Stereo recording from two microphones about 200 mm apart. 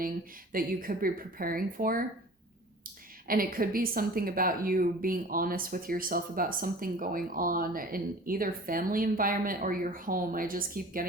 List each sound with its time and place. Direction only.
0.5 s speech: 45° right (ahead or behind)
3.2 s speech: 45° right (ahead or behind)